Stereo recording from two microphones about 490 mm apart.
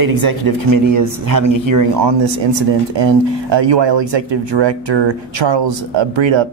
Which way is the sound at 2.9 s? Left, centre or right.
Right.